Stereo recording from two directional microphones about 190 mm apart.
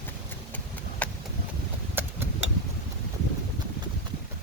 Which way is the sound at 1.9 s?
10° right (ahead or behind).